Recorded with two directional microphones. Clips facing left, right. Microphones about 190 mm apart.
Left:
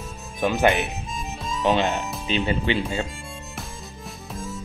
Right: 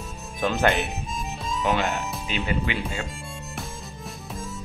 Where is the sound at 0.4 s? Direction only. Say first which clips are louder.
Left 2 dB; 15° left (ahead or behind).